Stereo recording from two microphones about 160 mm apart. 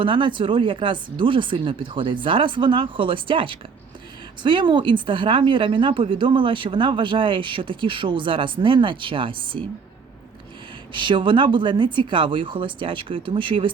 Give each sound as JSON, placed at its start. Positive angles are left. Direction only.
{"t": 0.0, "sound": "a woman's voice", "side_deg": -30}
{"t": 10.9, "sound": "a woman's voice", "side_deg": -30}